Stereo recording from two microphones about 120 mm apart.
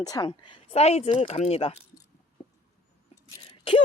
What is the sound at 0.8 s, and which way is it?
Speech, 60° left (ahead or behind).